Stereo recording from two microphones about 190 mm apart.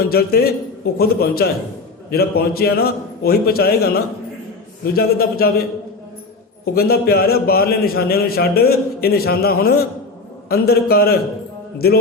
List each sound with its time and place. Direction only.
0.0 s a man's voice: 55° left (ahead or behind)
6.7 s a man's voice: 55° left (ahead or behind)